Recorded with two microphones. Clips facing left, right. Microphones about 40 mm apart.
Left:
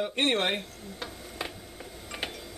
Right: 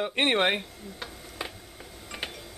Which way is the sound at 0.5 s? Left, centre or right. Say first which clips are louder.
Right 1 dB; centre.